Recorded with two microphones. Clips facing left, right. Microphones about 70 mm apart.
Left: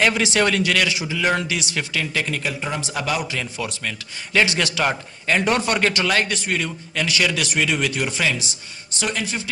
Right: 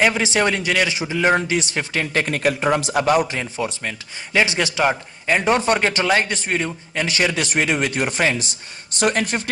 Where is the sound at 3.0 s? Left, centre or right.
Right.